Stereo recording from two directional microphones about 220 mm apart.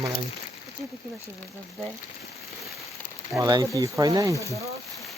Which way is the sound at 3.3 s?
15° right (ahead or behind).